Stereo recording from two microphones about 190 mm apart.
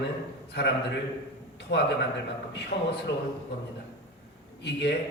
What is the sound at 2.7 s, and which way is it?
Speech, 55° left (ahead or behind).